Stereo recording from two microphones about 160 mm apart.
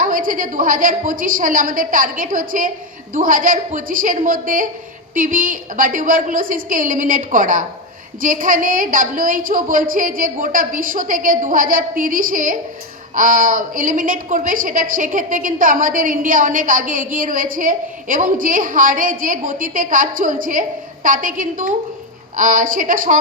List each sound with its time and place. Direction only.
0.0 s a woman's voice: 60° right (ahead or behind)